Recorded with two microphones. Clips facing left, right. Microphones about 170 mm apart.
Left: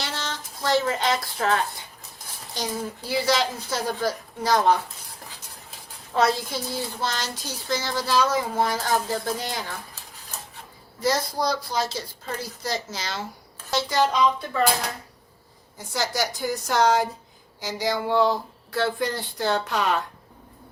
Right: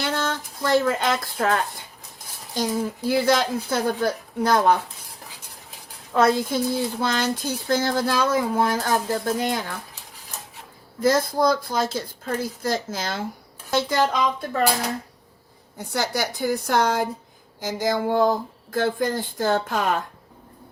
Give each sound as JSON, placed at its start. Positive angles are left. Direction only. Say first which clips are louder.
{"t": 0.0, "sound": "a sound", "louder": "right 6 dB", "side_deg": -55}
{"t": 3.1, "sound": "a woman's voice", "louder": "right 3 dB", "side_deg": -50}
{"t": 6.1, "sound": "speech", "louder": "right 4 dB", "side_deg": -50}
{"t": 11.0, "sound": "speech", "louder": "right 5 dB", "side_deg": -50}
{"t": 15.8, "sound": "a woman's voice", "louder": "right 1 dB", "side_deg": -60}